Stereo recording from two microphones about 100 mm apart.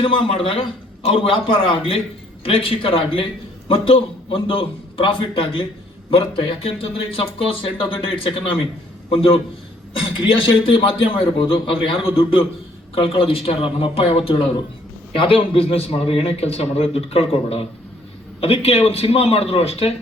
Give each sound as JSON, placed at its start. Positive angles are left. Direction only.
{"t": 0.0, "sound": "a man's voice", "side_deg": 60}